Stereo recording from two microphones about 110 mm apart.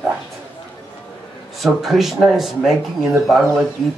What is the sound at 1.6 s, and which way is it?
Speech, centre (ahead or behind).